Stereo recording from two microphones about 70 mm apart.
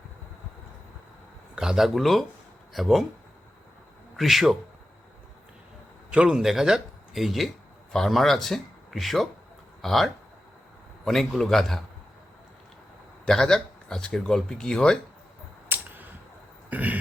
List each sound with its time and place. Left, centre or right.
1.5 s speech: centre
4.2 s speech: centre
6.1 s speech: centre
13.2 s speech: centre
15.7 s a sound: right